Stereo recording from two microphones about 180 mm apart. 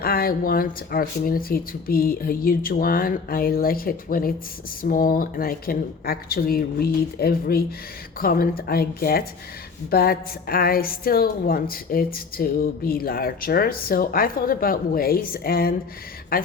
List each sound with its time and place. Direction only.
0.0 s a woman's voice: 55° left (ahead or behind)